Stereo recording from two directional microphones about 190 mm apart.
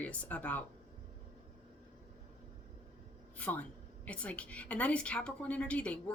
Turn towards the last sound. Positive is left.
turn(degrees=5)  # may be behind; listen again after turning